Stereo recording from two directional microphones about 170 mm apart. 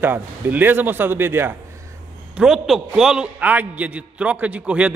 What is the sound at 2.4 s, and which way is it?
A man's voice, centre (ahead or behind).